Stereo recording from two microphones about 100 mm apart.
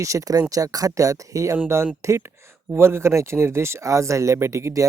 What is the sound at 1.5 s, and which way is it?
Speech, 25° right (ahead or behind).